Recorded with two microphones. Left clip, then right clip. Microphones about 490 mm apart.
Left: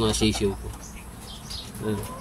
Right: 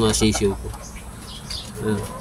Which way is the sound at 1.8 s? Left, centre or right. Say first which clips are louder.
Right 5 dB; left.